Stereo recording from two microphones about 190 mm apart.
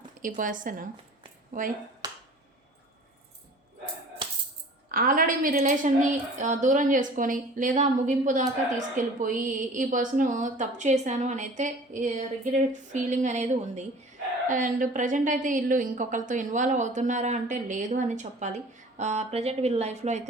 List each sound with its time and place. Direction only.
0.2 s a woman's voice: 45° right (ahead or behind)
4.9 s a woman's voice: 50° right (ahead or behind)